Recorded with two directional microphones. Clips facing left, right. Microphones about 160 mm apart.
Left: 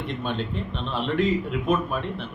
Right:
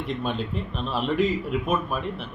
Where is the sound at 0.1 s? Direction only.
Centre (ahead or behind).